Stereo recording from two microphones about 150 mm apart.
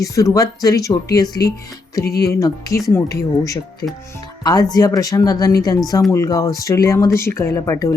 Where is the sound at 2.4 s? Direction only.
20° left (ahead or behind).